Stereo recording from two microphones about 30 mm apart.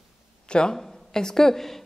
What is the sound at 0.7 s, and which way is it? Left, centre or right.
A woman's voice, centre.